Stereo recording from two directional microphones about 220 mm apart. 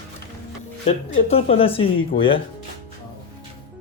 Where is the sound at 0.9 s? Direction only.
25° left (ahead or behind).